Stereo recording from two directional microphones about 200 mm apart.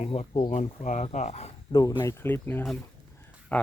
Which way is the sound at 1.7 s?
20° left (ahead or behind).